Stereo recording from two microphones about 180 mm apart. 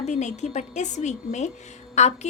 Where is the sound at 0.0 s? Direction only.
40° left (ahead or behind).